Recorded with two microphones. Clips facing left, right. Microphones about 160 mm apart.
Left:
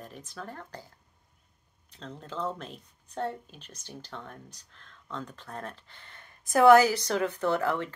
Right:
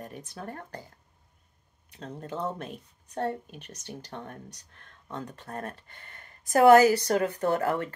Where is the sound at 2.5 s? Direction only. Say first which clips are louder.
Right 4 dB; 55° right (ahead or behind).